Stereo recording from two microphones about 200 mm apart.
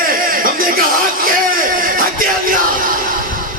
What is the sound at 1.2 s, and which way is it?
Speech, 45° right (ahead or behind).